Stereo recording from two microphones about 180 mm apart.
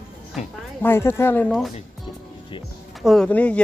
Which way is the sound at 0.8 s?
10° left (ahead or behind).